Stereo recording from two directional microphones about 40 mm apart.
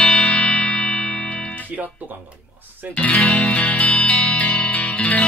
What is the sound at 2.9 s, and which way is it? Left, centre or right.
Speech, left.